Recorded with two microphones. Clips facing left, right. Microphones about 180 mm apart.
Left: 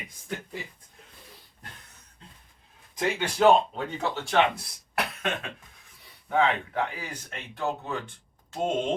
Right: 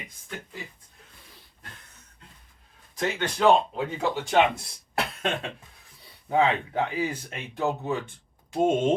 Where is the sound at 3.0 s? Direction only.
10° left (ahead or behind).